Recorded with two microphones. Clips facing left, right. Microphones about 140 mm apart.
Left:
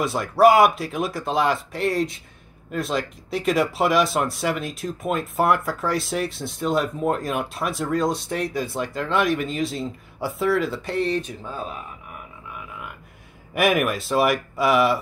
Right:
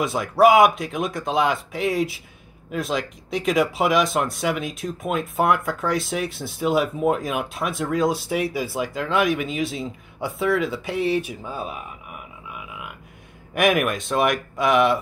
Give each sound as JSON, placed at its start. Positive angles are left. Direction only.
{"t": 0.0, "sound": "speech", "side_deg": 0}
{"t": 13.6, "sound": "speech", "side_deg": 0}